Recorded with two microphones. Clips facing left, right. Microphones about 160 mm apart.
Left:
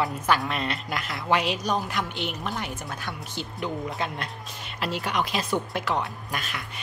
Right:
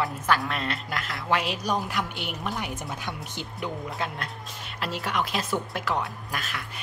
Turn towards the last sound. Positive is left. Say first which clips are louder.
# left 1 dB
turn(degrees=0)  # may be behind; listen again after turning